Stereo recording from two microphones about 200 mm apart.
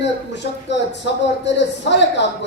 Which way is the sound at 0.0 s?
60° left (ahead or behind).